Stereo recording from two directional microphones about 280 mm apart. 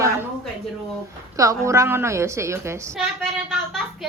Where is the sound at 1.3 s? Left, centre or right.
Centre.